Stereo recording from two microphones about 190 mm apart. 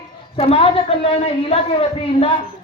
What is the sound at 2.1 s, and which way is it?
Speech, 30° left (ahead or behind).